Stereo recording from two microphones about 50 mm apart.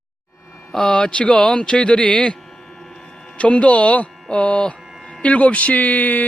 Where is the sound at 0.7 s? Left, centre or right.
Centre.